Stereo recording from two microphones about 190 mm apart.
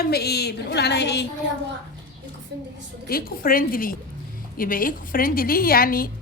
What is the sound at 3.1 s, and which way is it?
Speech, 50° left (ahead or behind).